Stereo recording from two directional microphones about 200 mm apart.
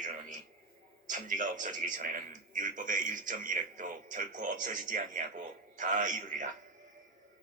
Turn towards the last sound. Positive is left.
turn(degrees=-40)  # may be behind; listen again after turning